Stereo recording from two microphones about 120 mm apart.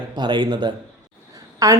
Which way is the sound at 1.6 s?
25° right (ahead or behind).